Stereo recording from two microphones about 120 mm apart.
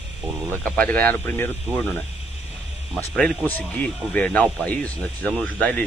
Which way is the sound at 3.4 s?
15° left (ahead or behind).